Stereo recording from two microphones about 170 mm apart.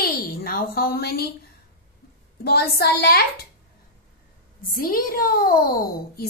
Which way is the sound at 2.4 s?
65° left (ahead or behind).